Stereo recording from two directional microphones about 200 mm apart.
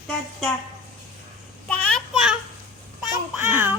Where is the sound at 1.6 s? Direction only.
5° left (ahead or behind).